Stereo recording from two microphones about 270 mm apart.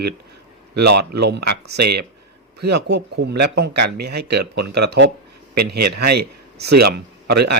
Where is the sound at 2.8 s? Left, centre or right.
Right.